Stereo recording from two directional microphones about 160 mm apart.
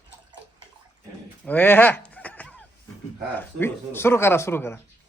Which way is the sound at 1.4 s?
10° left (ahead or behind).